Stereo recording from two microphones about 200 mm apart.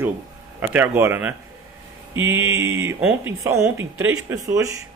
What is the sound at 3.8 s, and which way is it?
Speech, 90° right.